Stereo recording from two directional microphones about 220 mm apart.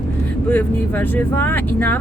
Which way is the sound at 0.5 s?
10° left (ahead or behind).